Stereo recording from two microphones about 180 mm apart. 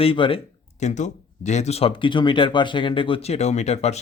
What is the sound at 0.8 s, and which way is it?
Speech, 40° left (ahead or behind).